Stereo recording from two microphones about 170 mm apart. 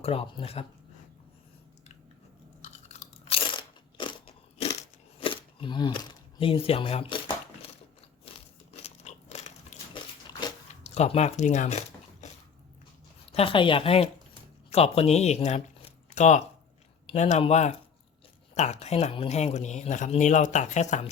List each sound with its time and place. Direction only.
0.0 s speech: 35° left (ahead or behind)
2.6 s crunch: 45° left (ahead or behind)
8.7 s biting: 40° left (ahead or behind)
10.8 s speech: 40° left (ahead or behind)
13.3 s speech: 30° left (ahead or behind)